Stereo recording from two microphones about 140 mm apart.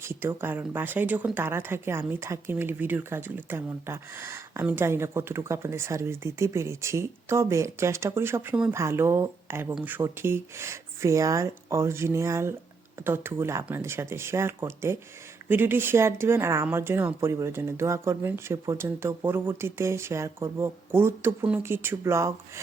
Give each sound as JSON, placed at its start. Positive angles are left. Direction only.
{"t": 0.0, "sound": "speech", "side_deg": -15}